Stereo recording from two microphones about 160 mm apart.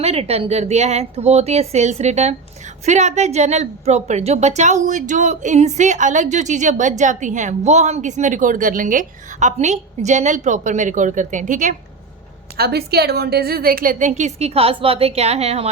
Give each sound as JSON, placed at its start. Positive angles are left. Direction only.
{"t": 0.0, "sound": "a woman's voice", "side_deg": -40}
{"t": 12.5, "sound": "a woman's voice", "side_deg": -85}